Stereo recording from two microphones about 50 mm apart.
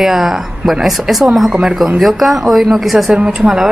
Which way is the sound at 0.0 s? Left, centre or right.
Centre.